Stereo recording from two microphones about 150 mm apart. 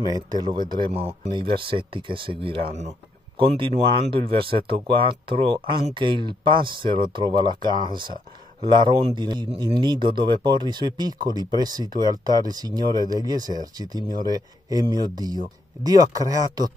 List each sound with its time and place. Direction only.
0.0 s speech: 25° right (ahead or behind)